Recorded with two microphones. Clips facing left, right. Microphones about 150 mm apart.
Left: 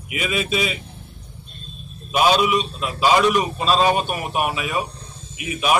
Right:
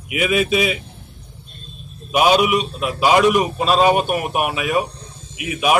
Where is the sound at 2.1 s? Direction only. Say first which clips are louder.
Right 2 dB; 10° right (ahead or behind).